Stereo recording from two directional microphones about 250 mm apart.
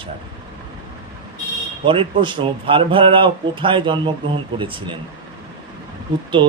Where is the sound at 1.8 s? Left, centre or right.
Centre.